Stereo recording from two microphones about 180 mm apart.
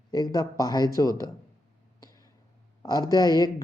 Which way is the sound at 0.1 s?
20° left (ahead or behind).